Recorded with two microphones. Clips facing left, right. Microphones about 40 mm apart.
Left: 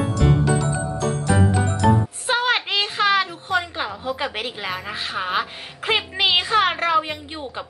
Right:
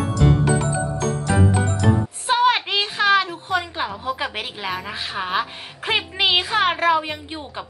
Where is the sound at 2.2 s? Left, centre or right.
Centre.